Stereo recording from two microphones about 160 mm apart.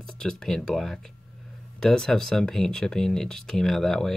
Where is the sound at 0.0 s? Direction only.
5° left (ahead or behind).